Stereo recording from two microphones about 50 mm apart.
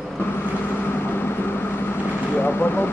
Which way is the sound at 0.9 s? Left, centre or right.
Left.